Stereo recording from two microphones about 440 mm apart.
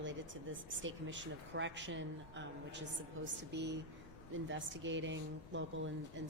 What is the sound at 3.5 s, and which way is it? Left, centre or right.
Speech, right.